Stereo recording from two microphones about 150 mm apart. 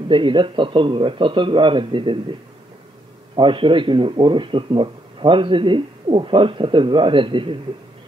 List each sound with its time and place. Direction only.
0.1 s speech: 35° right (ahead or behind)
3.3 s speech: 35° right (ahead or behind)